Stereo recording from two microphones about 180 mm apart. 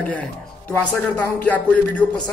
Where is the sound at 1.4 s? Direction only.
10° left (ahead or behind).